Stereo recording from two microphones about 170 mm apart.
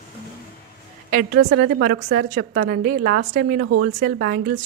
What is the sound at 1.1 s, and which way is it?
A woman's voice, 65° right (ahead or behind).